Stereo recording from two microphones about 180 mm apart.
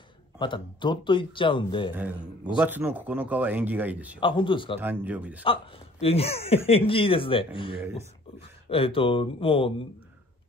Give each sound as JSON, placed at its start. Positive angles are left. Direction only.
{"t": 0.4, "sound": "speech", "side_deg": 25}
{"t": 2.0, "sound": "speech", "side_deg": -10}
{"t": 4.2, "sound": "speech", "side_deg": 30}
{"t": 4.7, "sound": "speech", "side_deg": -10}
{"t": 5.4, "sound": "speech", "side_deg": 30}